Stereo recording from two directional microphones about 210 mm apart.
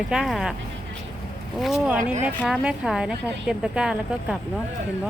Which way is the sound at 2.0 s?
35° right (ahead or behind).